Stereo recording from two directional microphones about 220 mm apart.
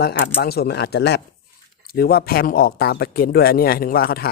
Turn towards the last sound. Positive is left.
turn(degrees=45)  # may be behind; listen again after turning